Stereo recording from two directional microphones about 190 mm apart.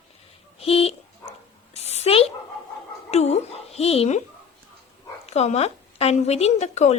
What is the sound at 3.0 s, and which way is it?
Music, 35° left (ahead or behind).